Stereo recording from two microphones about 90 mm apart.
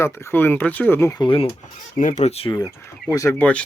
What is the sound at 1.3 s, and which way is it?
Speech, 90° left.